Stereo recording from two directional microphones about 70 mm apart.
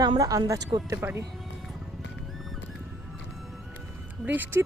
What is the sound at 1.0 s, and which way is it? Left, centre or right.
Speech, right.